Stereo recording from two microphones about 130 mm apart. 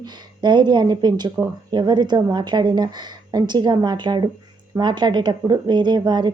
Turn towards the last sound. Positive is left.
turn(degrees=-35)  # may be behind; listen again after turning